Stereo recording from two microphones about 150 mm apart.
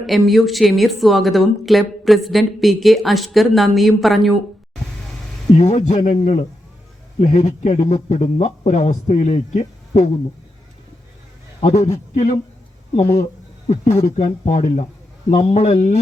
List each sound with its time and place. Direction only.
0.0 s a woman's voice: centre (ahead or behind)
5.5 s speech: 50° left (ahead or behind)
11.6 s speech: 50° left (ahead or behind)